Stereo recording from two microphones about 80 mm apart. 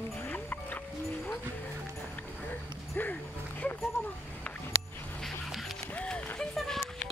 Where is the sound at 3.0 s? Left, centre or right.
Left.